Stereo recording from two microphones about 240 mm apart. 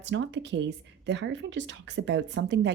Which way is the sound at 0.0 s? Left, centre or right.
Right.